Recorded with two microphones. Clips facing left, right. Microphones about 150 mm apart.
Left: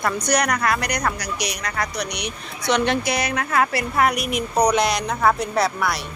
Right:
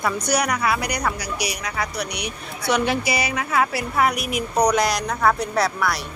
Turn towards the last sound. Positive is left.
turn(degrees=0)  # may be behind; listen again after turning